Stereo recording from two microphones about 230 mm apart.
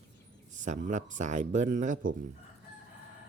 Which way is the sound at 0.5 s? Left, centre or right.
Right.